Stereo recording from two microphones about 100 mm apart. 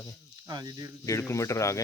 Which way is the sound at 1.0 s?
30° left (ahead or behind).